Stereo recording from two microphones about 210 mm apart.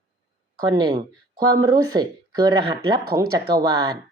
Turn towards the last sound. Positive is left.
turn(degrees=-20)  # may be behind; listen again after turning